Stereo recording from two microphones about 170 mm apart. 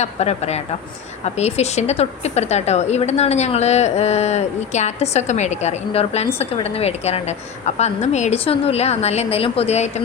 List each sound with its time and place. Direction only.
0.0 s a woman's voice: 40° left (ahead or behind)